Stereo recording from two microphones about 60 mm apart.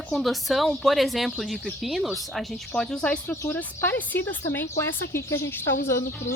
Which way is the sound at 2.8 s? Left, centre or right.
Centre.